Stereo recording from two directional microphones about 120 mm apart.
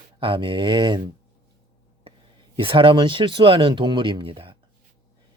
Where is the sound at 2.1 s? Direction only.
50° right (ahead or behind).